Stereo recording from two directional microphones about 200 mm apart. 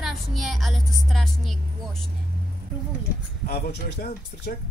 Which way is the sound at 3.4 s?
55° left (ahead or behind).